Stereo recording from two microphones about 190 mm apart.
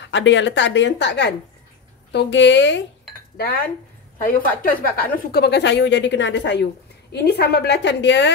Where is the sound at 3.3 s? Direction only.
55° left (ahead or behind); by 8.3 s 70° left (ahead or behind).